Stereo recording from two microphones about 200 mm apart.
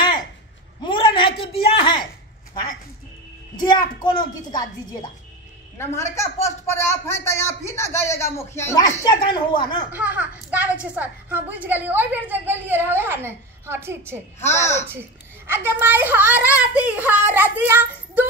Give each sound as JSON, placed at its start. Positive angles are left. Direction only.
{"t": 0.8, "sound": "a sound", "side_deg": 25}
{"t": 3.5, "sound": "a woman's voice", "side_deg": 20}
{"t": 6.1, "sound": "a woman's voice", "side_deg": 15}
{"t": 9.8, "sound": "a woman's voice", "side_deg": -5}
{"t": 14.4, "sound": "speech", "side_deg": 15}
{"t": 14.9, "sound": "a woman's voice", "side_deg": -10}